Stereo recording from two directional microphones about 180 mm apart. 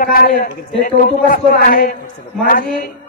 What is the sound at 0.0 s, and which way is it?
A man's voice, 50° left (ahead or behind).